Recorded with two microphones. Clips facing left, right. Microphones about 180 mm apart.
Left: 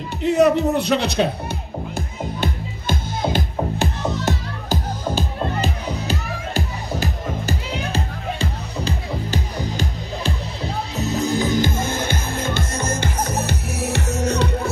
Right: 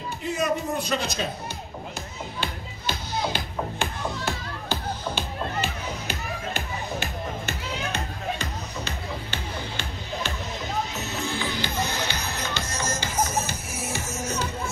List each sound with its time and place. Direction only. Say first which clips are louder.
0.2 s speech: left 11 dB; 65° left (ahead or behind)
2.0 s music: left 8 dB; 50° left (ahead or behind); by 14.7 s 65° left (ahead or behind)